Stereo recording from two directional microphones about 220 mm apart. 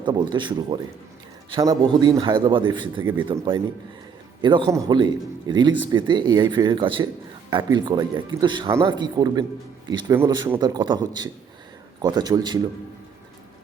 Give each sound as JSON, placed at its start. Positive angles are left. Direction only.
{"t": 0.0, "sound": "a man's voice", "side_deg": -20}